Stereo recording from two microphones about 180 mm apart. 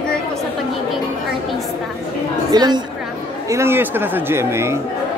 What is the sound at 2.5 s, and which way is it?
Speech, 20° right (ahead or behind).